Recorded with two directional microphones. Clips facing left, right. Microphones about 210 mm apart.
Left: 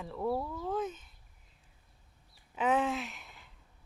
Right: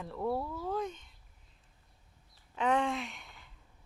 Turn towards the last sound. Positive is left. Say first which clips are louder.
# even
turn(degrees=0)  # may be behind; listen again after turning